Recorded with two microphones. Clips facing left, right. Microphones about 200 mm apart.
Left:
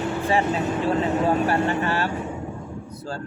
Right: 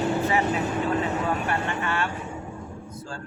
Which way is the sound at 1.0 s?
35° left (ahead or behind).